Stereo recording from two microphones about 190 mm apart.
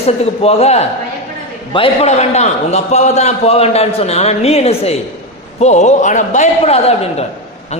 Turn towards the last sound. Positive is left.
turn(degrees=30)  # may be behind; listen again after turning